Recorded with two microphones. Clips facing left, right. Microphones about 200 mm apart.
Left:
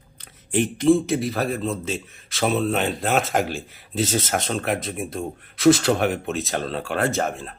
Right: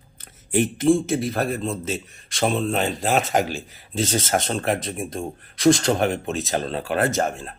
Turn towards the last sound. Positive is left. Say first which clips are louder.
# right 1 dB
turn(degrees=0)  # may be behind; listen again after turning